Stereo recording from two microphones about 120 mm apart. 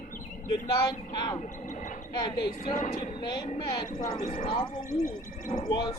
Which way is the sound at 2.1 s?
35° left (ahead or behind).